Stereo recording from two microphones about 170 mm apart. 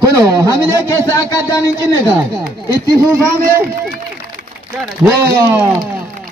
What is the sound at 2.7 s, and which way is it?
Speech, 20° right (ahead or behind).